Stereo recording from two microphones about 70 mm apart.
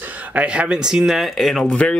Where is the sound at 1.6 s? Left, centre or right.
Centre.